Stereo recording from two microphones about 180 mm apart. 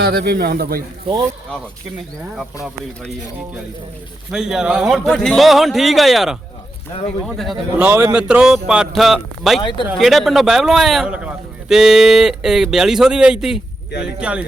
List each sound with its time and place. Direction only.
0.0 s a man's voice: 60° right (ahead or behind)
4.3 s a man's voice: 5° right (ahead or behind)
7.8 s a man's voice: 15° right (ahead or behind)
9.6 s speech: 25° left (ahead or behind)
10.0 s a man's voice: centre (ahead or behind)